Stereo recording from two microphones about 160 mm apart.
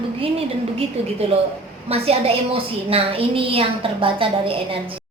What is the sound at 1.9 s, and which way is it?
A woman's voice, 35° right (ahead or behind).